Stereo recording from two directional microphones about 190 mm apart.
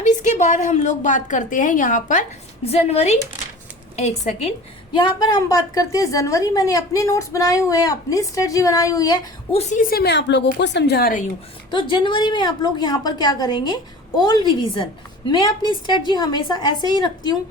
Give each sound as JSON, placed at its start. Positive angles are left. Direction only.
{"t": 0.0, "sound": "a woman's voice", "side_deg": 40}
{"t": 4.9, "sound": "a woman's voice", "side_deg": 20}
{"t": 9.6, "sound": "a woman's voice", "side_deg": 40}
{"t": 11.7, "sound": "a woman's voice", "side_deg": 25}